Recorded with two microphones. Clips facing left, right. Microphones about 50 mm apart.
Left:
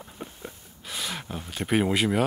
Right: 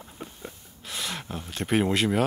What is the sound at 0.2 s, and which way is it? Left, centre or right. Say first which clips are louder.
Speech: left 1 dB; centre.